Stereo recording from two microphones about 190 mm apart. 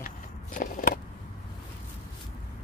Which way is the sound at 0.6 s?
45° left (ahead or behind).